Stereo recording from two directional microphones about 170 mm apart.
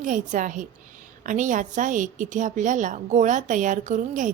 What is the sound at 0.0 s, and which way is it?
A woman's voice, 50° right (ahead or behind).